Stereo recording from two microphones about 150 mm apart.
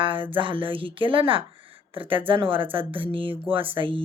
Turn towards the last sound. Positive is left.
turn(degrees=-35)  # may be behind; listen again after turning